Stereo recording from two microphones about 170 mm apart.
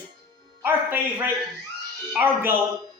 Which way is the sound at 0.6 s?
10° right (ahead or behind).